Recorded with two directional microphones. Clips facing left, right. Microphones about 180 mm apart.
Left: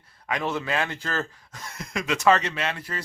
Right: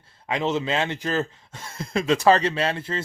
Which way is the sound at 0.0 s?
25° right (ahead or behind).